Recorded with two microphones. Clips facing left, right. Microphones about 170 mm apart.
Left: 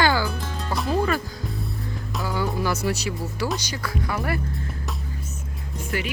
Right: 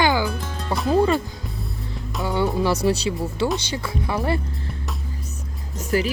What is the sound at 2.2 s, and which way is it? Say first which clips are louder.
Speech: right 5 dB; 25° right (ahead or behind).